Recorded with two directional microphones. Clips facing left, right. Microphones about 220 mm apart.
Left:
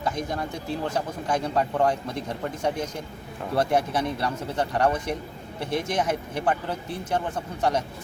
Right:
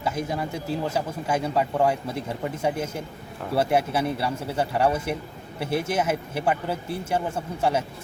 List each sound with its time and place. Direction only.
0.0 s speech: 5° right (ahead or behind)